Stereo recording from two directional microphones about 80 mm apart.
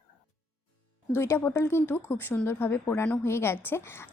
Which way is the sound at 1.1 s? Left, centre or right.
Left.